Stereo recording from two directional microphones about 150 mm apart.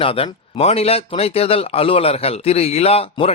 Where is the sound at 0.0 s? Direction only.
40° left (ahead or behind).